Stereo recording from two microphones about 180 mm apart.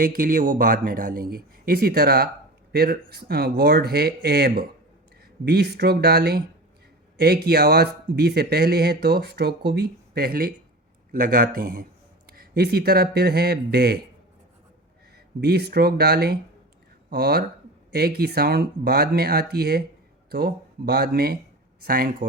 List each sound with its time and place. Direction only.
0.0 s speech: 50° right (ahead or behind)
15.4 s speech: 60° right (ahead or behind)